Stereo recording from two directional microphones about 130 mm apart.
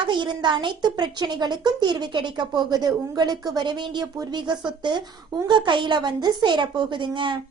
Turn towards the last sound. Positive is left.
turn(degrees=-40)  # may be behind; listen again after turning